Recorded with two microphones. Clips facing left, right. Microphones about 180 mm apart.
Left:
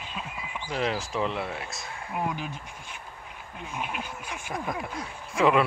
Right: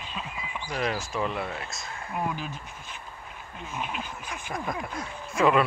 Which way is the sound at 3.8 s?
10° left (ahead or behind).